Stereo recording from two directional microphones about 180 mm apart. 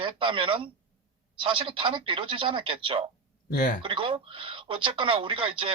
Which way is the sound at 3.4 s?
50° left (ahead or behind).